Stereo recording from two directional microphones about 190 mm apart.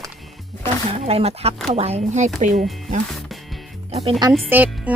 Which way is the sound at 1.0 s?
30° right (ahead or behind).